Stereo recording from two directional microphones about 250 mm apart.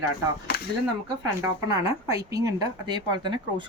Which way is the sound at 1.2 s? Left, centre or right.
Centre.